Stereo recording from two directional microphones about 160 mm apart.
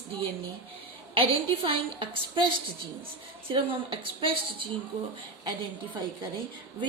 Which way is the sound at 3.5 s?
35° right (ahead or behind).